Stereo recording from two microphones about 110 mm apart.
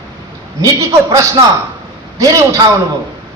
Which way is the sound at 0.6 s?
30° right (ahead or behind).